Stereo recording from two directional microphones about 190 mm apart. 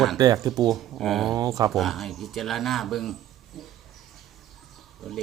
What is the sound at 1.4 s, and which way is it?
Speech, 20° right (ahead or behind).